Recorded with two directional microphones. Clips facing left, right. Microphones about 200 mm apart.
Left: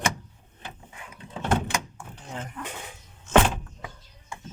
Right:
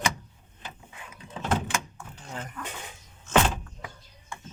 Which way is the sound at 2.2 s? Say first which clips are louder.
Left 2 dB; 20° left (ahead or behind).